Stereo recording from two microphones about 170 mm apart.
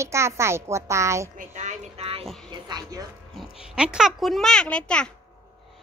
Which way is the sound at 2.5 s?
25° right (ahead or behind).